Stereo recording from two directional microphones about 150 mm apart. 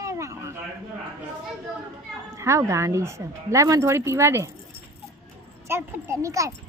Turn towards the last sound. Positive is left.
turn(degrees=-20)  # may be behind; listen again after turning